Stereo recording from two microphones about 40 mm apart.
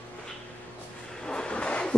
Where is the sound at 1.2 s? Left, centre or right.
Left.